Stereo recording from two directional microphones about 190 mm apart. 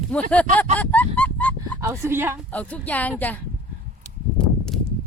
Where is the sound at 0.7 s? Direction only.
10° left (ahead or behind).